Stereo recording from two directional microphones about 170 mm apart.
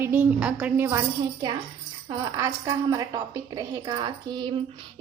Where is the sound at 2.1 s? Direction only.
20° right (ahead or behind).